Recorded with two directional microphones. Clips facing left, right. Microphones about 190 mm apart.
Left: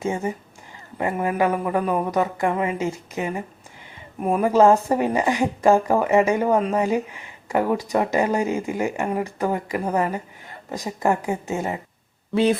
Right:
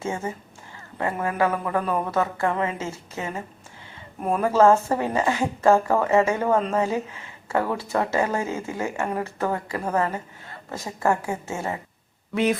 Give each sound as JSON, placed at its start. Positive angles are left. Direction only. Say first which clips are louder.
{"t": 0.0, "sound": "speech", "louder": "left 4 dB", "side_deg": 15}
{"t": 12.3, "sound": "speech", "louder": "left 3 dB", "side_deg": 30}